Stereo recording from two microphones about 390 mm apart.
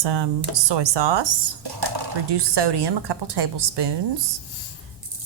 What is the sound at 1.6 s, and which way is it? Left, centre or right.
Speech, right.